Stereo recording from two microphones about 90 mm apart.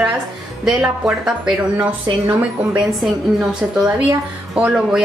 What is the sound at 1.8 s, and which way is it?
A woman's voice, 20° right (ahead or behind).